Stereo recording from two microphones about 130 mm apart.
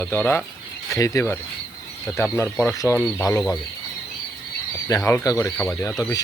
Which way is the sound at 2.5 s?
Centre (ahead or behind).